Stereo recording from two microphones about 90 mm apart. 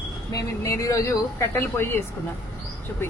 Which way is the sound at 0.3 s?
40° left (ahead or behind).